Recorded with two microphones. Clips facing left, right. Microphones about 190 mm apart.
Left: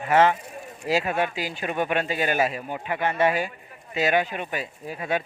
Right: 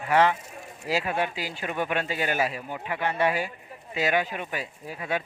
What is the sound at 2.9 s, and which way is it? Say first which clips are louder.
Speech: left 3 dB; 45° left (ahead or behind).